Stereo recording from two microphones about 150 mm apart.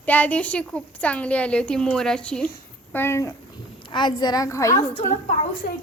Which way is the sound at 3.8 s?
30° left (ahead or behind).